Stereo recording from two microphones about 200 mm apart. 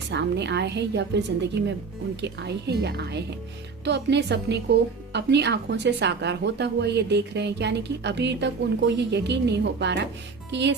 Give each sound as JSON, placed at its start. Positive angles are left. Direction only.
{"t": 0.1, "sound": "speech", "side_deg": -60}